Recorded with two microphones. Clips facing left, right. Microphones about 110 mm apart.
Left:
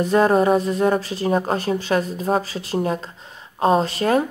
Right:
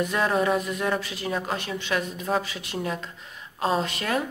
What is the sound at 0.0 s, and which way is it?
Speech, 35° left (ahead or behind).